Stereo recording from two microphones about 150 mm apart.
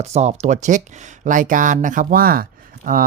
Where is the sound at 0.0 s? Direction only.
45° right (ahead or behind).